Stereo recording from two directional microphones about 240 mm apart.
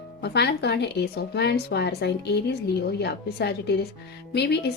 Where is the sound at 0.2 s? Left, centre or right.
Left.